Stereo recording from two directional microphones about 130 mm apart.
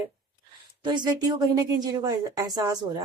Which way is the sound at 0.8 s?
35° right (ahead or behind).